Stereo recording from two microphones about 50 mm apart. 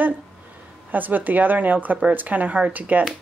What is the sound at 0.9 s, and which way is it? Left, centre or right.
Speech, right.